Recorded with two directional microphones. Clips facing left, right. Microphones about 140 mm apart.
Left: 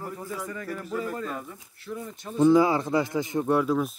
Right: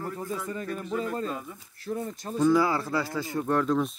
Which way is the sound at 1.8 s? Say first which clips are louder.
Right 4 dB; 40° right (ahead or behind).